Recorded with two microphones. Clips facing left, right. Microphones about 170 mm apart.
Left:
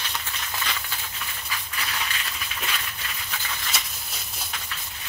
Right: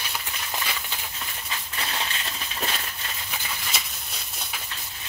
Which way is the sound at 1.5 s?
30° right (ahead or behind).